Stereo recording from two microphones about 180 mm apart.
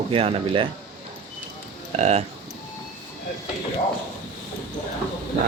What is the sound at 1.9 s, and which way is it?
Speech, 40° right (ahead or behind).